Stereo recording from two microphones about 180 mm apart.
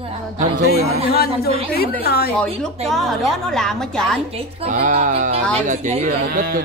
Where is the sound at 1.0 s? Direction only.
60° left (ahead or behind).